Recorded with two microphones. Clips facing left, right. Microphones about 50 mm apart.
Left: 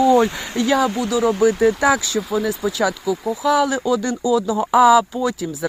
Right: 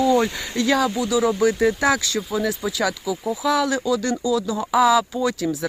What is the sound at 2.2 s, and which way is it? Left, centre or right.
Speech, centre.